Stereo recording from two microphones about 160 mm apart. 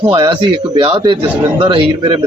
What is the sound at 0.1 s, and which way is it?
A man's voice, 30° right (ahead or behind).